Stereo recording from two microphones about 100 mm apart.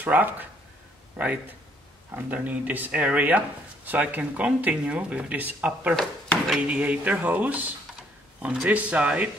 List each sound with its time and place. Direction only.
0.0 s a man's voice: 20° right (ahead or behind)